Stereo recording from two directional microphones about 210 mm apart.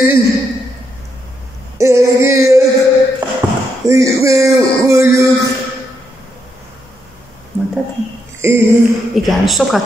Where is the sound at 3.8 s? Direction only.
15° right (ahead or behind).